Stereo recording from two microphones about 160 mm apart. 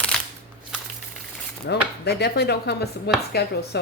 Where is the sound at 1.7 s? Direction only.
90° left.